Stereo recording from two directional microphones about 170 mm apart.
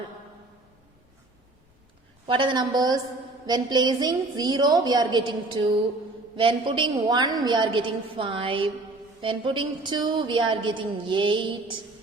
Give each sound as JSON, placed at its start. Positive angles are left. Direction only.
{"t": 2.2, "sound": "a woman's voice", "side_deg": -30}